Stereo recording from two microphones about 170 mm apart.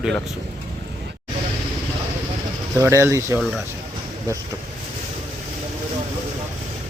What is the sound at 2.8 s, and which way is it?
Speech, 15° right (ahead or behind).